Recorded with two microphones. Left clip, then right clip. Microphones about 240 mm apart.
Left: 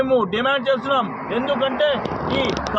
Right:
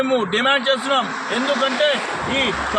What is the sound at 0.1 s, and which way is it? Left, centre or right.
Speech, right.